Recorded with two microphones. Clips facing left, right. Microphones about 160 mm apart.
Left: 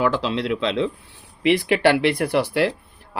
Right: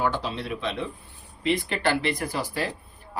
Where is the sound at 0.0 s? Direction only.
90° left.